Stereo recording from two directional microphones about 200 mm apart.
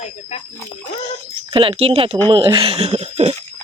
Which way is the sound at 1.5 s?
25° right (ahead or behind).